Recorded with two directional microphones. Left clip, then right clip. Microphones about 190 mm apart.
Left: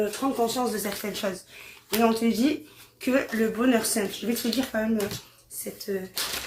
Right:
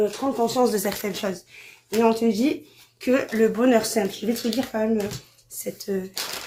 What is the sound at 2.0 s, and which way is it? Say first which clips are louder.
Speech: right 2 dB; 30° right (ahead or behind).